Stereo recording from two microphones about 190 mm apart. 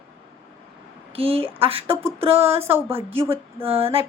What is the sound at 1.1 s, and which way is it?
A woman's voice, 30° right (ahead or behind).